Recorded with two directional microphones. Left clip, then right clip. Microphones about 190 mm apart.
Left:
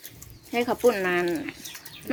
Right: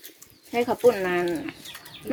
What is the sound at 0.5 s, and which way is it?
Speech, 5° left (ahead or behind).